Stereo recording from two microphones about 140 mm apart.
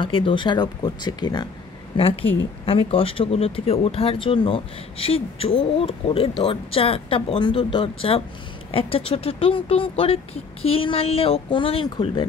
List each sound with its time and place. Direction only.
0.0 s speech: 40° left (ahead or behind)
2.0 s speech: 40° left (ahead or behind)